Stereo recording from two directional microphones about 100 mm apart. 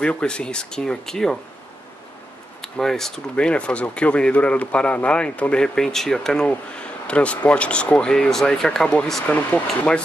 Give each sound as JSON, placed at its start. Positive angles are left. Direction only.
{"t": 0.0, "sound": "speech", "side_deg": 10}
{"t": 2.6, "sound": "speech", "side_deg": 5}